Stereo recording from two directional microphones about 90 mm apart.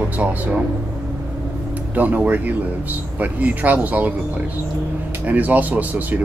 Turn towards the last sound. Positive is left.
turn(degrees=-20)  # may be behind; listen again after turning